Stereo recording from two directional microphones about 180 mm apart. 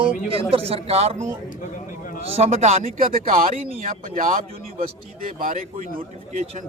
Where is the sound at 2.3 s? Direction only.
35° right (ahead or behind).